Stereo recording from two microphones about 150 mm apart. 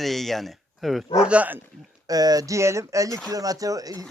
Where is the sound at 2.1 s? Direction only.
25° right (ahead or behind).